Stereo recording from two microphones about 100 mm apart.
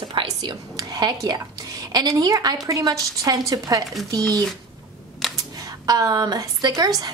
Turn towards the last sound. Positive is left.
turn(degrees=-40)  # may be behind; listen again after turning